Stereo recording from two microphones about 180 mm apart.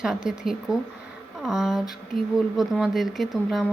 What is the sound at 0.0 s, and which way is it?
A woman's voice, 5° right (ahead or behind).